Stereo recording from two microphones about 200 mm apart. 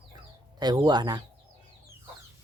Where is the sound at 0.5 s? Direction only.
20° right (ahead or behind).